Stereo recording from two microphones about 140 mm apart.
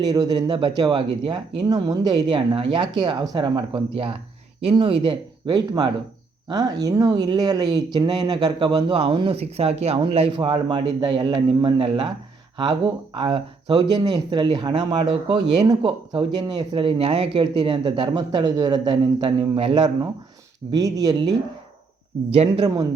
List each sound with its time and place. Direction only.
0.0 s speech: 30° right (ahead or behind)
22.4 s speech: 30° right (ahead or behind)